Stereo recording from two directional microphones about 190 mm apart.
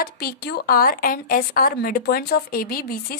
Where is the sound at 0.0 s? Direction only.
55° left (ahead or behind).